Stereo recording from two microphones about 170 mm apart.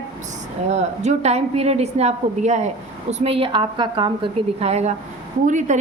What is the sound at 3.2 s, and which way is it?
A woman's voice, 35° right (ahead or behind).